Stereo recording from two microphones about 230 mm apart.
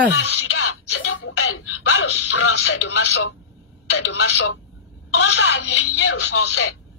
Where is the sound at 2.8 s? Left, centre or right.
Left.